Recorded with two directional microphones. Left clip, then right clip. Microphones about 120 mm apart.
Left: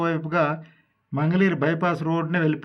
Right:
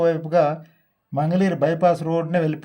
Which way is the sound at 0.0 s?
10° right (ahead or behind).